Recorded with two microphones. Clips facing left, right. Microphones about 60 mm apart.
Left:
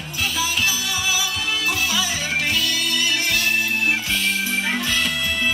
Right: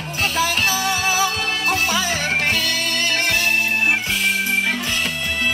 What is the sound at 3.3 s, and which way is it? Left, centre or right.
Music, right.